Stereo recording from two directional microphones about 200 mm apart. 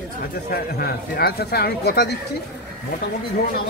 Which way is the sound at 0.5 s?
50° left (ahead or behind).